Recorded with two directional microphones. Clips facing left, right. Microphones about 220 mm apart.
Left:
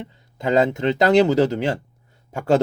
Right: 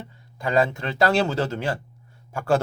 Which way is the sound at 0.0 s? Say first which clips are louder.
Left 4 dB; 20° left (ahead or behind).